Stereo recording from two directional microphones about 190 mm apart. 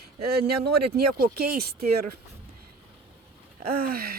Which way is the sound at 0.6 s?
55° right (ahead or behind).